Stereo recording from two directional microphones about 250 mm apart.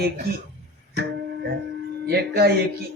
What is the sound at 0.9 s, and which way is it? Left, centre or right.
Music, right.